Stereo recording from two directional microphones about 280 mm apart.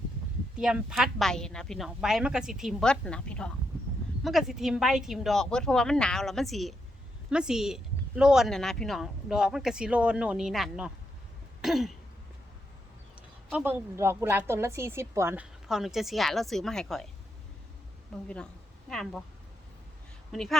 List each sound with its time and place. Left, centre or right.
0.5 s a woman's voice: centre
11.6 s throat clearing: centre
13.5 s a woman's voice: centre
18.1 s a woman's voice: centre
20.3 s a woman's voice: centre